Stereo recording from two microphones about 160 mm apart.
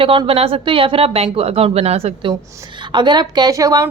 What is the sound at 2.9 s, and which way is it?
Speech, 30° right (ahead or behind).